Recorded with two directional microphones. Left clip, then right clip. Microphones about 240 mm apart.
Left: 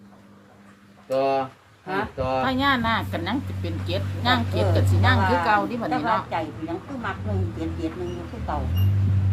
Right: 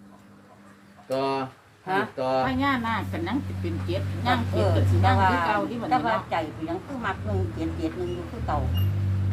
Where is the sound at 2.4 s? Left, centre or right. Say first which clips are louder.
Left 3 dB; left.